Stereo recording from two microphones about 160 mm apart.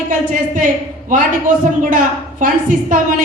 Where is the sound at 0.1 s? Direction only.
55° right (ahead or behind).